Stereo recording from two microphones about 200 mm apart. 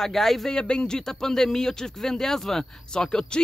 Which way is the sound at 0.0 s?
Centre (ahead or behind).